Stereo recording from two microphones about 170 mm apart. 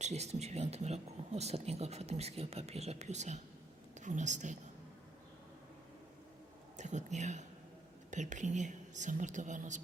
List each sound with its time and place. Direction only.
0.0 s a woman's voice: 40° right (ahead or behind)
6.7 s a woman's voice: 45° right (ahead or behind)